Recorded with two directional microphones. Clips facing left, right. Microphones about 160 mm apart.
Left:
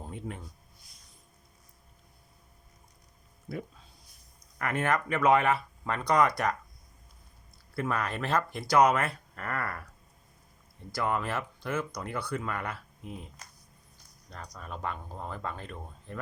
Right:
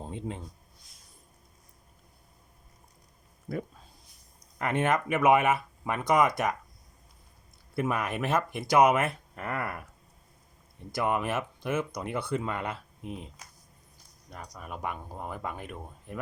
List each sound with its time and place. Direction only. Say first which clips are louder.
0.0 s speech: right 3 dB; 25° right (ahead or behind)
3.5 s speech: right 3 dB; 50° right (ahead or behind)
4.5 s speech: right 2 dB; 20° right (ahead or behind)
7.8 s speech: right 2 dB; 20° right (ahead or behind)